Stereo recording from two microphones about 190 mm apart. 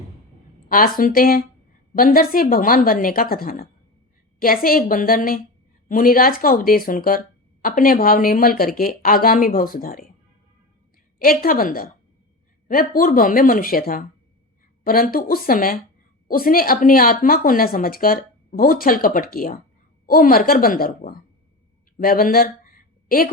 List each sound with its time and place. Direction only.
0.7 s speech: 45° left (ahead or behind)
11.2 s speech: 50° left (ahead or behind)
21.9 s a sound: 50° left (ahead or behind)